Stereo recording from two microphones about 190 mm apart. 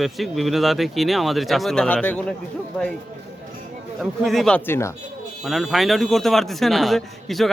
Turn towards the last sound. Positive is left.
turn(degrees=0)  # may be behind; listen again after turning